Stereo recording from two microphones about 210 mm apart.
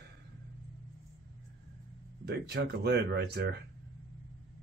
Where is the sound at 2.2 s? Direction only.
50° right (ahead or behind).